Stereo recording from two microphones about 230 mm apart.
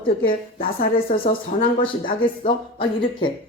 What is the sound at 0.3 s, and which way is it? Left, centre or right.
A woman's voice, left.